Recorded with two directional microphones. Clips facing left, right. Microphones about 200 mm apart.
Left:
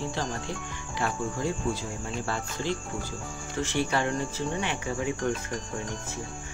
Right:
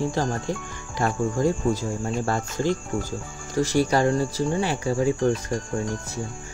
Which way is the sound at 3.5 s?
40° right (ahead or behind).